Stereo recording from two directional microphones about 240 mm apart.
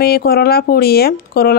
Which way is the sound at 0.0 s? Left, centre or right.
Left.